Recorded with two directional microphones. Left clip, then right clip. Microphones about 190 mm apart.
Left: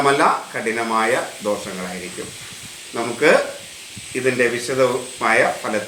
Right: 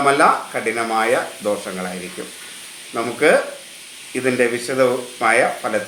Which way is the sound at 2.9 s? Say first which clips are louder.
Even; 10° right (ahead or behind).